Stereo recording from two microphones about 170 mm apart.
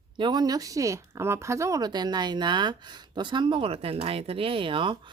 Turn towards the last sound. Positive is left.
turn(degrees=-30)  # may be behind; listen again after turning